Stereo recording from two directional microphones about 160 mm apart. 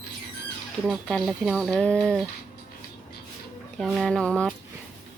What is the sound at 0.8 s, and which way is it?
Speech, centre (ahead or behind).